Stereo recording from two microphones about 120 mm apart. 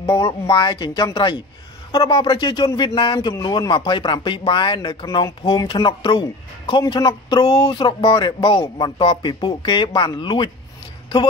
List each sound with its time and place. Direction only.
0.1 s speech: 35° left (ahead or behind)
5.7 s speech: 45° left (ahead or behind)